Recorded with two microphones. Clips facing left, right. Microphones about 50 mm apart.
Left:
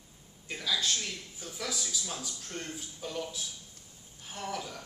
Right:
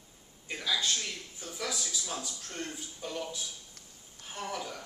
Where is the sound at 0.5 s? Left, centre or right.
Centre.